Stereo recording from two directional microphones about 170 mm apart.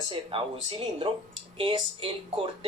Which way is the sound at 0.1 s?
30° right (ahead or behind).